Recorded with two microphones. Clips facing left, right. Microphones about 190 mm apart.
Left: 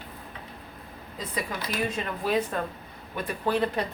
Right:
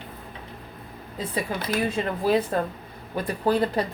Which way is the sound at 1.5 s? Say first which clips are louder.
Right 5 dB; 30° right (ahead or behind).